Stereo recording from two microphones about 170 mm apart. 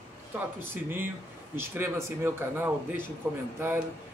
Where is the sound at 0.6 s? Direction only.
10° right (ahead or behind).